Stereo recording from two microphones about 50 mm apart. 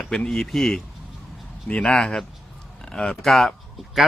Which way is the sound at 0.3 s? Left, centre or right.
Centre.